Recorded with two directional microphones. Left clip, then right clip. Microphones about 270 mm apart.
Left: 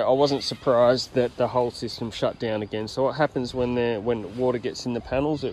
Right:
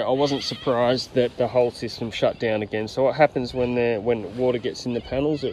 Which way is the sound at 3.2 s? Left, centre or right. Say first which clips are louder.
Right 4 dB; left.